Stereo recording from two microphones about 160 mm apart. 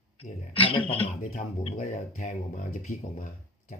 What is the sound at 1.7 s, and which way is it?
Speech, 50° left (ahead or behind).